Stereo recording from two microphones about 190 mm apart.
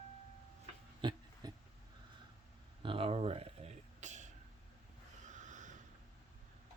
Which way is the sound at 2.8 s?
30° right (ahead or behind).